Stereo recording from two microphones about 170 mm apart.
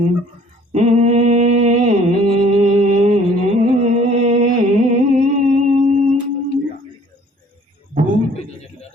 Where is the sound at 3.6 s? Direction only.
45° right (ahead or behind).